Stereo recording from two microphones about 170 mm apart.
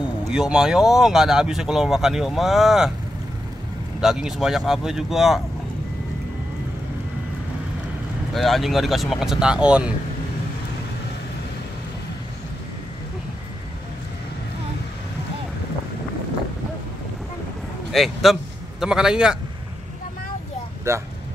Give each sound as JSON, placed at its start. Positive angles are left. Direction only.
{"t": 0.3, "sound": "speech", "side_deg": -5}
{"t": 4.0, "sound": "speech", "side_deg": -5}
{"t": 8.4, "sound": "speech", "side_deg": 0}
{"t": 17.9, "sound": "a man's voice", "side_deg": 0}
{"t": 20.9, "sound": "speech", "side_deg": -15}